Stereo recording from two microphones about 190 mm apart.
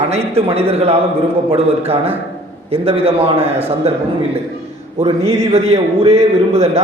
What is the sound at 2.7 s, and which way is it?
Speech, 30° right (ahead or behind).